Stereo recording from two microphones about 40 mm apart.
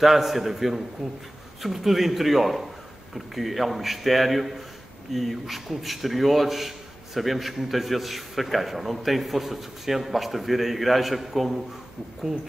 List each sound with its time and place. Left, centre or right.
0.0 s a man's voice: centre